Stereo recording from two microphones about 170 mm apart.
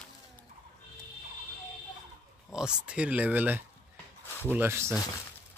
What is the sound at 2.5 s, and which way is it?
Speech, 5° right (ahead or behind).